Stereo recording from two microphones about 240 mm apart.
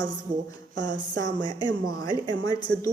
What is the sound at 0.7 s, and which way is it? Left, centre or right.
Speech, right.